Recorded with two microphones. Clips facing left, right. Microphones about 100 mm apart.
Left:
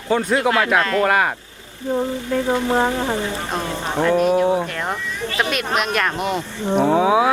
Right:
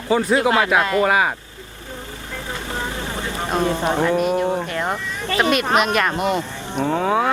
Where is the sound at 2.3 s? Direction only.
60° left (ahead or behind).